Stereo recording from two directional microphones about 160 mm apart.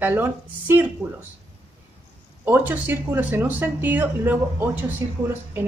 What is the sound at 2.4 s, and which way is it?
Speech, 10° right (ahead or behind).